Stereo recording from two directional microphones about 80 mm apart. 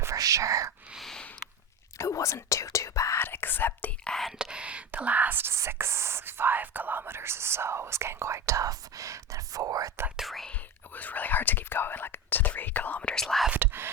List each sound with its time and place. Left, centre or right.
0.0 s whispering: right
0.9 s a sound: centre
2.0 s speech: left
4.0 s speech: centre
4.3 s speech: centre; by 9.9 s right
10.2 s speech: centre
10.5 s speech: left
13.2 s speech: centre
13.5 s whispering: right